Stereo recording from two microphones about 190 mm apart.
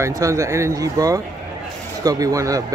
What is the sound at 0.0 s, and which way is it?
Speech, 15° right (ahead or behind).